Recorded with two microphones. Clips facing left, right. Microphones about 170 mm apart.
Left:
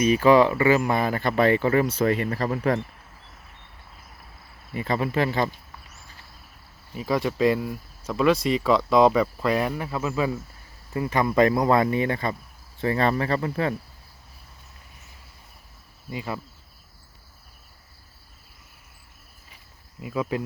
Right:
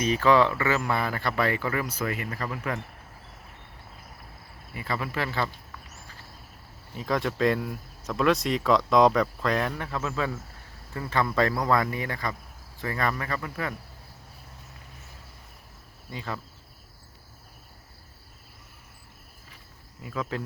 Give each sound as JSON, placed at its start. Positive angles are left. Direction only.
{"t": 0.0, "sound": "speech", "side_deg": 15}
{"t": 4.7, "sound": "speech", "side_deg": 25}
{"t": 6.9, "sound": "speech", "side_deg": 5}
{"t": 16.0, "sound": "speech", "side_deg": 10}
{"t": 20.0, "sound": "speech", "side_deg": 10}